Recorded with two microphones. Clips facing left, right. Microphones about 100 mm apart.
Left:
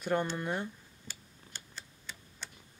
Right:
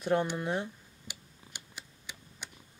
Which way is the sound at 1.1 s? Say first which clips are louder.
Right 1 dB; 15° right (ahead or behind).